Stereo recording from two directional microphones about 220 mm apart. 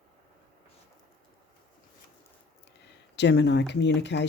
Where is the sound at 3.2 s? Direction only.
50° left (ahead or behind).